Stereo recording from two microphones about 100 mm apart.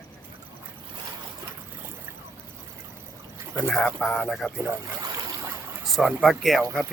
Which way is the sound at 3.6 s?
5° left (ahead or behind).